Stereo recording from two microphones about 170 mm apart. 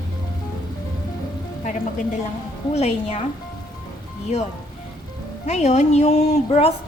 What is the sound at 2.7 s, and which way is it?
Speech, 40° left (ahead or behind).